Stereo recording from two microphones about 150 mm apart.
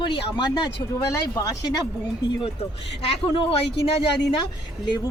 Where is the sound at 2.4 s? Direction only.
40° left (ahead or behind).